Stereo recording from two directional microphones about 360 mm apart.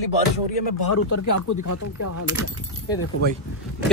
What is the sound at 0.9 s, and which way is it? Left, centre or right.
Speech, left.